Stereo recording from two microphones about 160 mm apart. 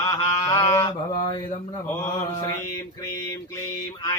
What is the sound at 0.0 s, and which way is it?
Mantra, 20° left (ahead or behind).